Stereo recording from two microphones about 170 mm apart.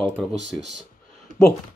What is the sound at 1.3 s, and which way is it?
Speech, 50° right (ahead or behind).